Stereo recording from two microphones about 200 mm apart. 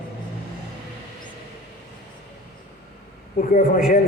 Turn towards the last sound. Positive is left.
turn(degrees=45)  # may be behind; listen again after turning